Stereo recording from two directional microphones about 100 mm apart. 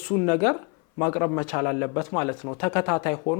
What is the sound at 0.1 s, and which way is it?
Speech, 15° left (ahead or behind).